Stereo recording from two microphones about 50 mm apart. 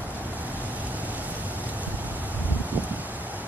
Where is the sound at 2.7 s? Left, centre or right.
Right.